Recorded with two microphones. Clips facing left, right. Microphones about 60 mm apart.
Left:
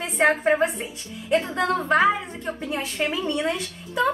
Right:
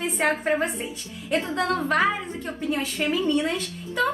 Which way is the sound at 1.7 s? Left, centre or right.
Centre.